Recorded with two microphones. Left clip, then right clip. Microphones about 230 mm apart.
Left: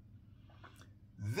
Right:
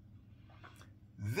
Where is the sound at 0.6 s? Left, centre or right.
Centre.